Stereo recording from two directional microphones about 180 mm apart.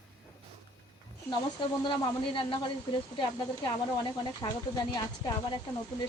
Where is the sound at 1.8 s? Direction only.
25° left (ahead or behind).